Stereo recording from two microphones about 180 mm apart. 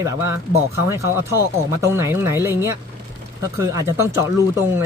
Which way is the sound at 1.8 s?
15° right (ahead or behind).